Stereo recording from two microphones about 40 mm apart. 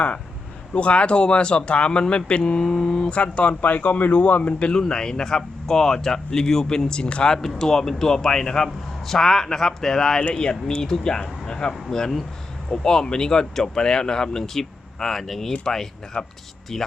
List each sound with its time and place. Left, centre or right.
0.7 s speech: left
4.7 s a man's voice: centre
7.3 s a man's voice: centre